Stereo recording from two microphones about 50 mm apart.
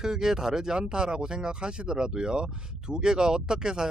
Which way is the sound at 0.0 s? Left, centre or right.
Centre.